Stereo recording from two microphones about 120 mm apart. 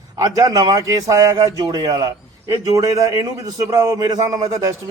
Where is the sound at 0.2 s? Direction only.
30° right (ahead or behind).